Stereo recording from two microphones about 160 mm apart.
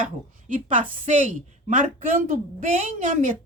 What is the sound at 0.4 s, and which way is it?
A woman's voice, 55° right (ahead or behind).